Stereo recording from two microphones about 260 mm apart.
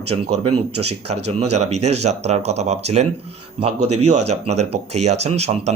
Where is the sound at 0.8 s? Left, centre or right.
Right.